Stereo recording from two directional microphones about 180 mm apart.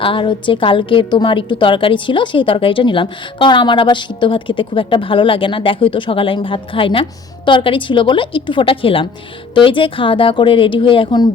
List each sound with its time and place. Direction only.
0.0 s a woman's voice: 30° left (ahead or behind)